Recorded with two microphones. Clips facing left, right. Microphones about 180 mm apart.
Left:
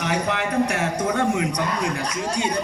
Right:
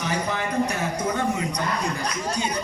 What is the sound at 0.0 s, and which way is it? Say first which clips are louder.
A man's voice: left 3 dB; 70° left (ahead or behind).